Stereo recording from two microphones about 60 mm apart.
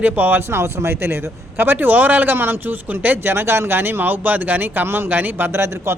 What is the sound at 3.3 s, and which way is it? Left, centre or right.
A man's voice, right.